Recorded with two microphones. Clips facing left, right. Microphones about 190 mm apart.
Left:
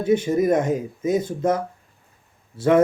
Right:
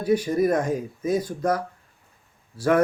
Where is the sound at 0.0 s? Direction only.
25° left (ahead or behind).